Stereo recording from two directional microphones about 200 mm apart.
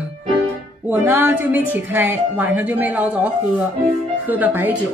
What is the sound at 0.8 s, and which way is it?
A woman's voice, 10° right (ahead or behind).